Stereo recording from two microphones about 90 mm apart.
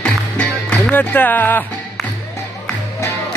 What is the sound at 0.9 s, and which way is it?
Speech, 20° left (ahead or behind).